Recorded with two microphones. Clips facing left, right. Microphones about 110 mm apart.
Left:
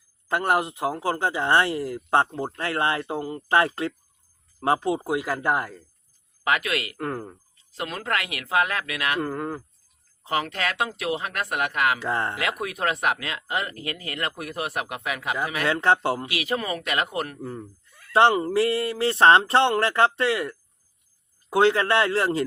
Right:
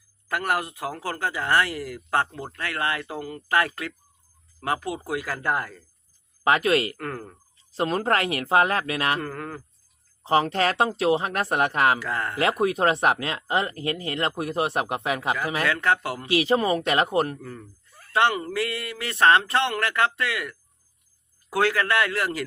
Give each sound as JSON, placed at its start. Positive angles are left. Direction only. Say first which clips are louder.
{"t": 0.3, "sound": "speech", "louder": "left 3 dB", "side_deg": 25}
{"t": 6.4, "sound": "speech", "louder": "right 5 dB", "side_deg": -30}
{"t": 6.9, "sound": "speech", "louder": "left 3 dB", "side_deg": 20}
{"t": 7.7, "sound": "speech", "louder": "right 6 dB", "side_deg": -35}
{"t": 9.2, "sound": "speech", "louder": "left 4 dB", "side_deg": 15}
{"t": 10.2, "sound": "speech", "louder": "right 5 dB", "side_deg": -30}
{"t": 11.9, "sound": "speech", "louder": "left 2 dB", "side_deg": 25}
{"t": 12.4, "sound": "speech", "louder": "right 6 dB", "side_deg": -30}
{"t": 15.6, "sound": "speech", "louder": "left 4 dB", "side_deg": 30}
{"t": 16.2, "sound": "speech", "louder": "right 6 dB", "side_deg": -30}
{"t": 17.4, "sound": "speech", "louder": "left 5 dB", "side_deg": 25}